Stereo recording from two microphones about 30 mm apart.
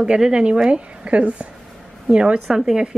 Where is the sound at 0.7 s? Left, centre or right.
Right.